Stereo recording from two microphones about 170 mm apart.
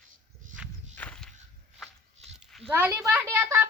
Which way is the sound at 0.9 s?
10° left (ahead or behind).